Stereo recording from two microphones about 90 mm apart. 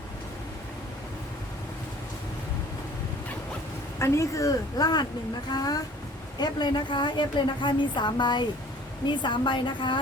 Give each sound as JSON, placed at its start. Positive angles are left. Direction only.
{"t": 3.9, "sound": "a woman's voice", "side_deg": 30}